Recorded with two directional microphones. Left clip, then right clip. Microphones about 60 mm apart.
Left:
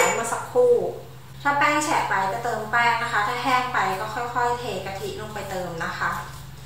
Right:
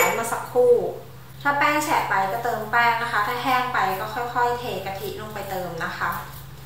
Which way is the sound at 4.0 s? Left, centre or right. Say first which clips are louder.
Right 1 dB; right.